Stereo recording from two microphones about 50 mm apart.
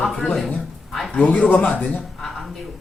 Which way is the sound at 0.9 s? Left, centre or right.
Centre.